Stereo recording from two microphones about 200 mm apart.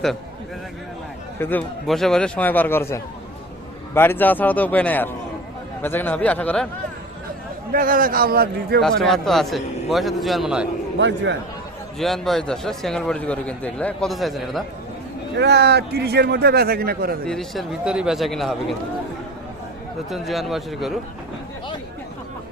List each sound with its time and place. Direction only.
1.4 s a man's voice: 10° left (ahead or behind)
3.9 s a man's voice: 10° left (ahead or behind)
7.7 s a man's voice: 45° right (ahead or behind)
8.8 s a man's voice: centre (ahead or behind)
10.9 s a man's voice: 65° right (ahead or behind)
11.9 s a man's voice: centre (ahead or behind)
15.4 s a man's voice: 55° right (ahead or behind)
17.2 s a man's voice: centre (ahead or behind)
20.1 s a man's voice: centre (ahead or behind)